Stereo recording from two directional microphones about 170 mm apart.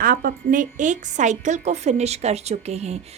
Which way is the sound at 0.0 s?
55° right (ahead or behind).